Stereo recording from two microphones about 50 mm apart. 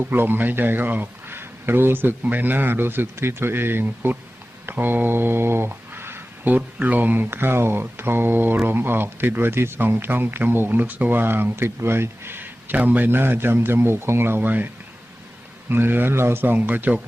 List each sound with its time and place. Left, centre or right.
0.0 s a man's voice: right
4.6 s mantra: right
6.6 s speech: right
7.3 s speech: right
13.1 s speech: right
15.7 s speech: right
16.4 s speech: right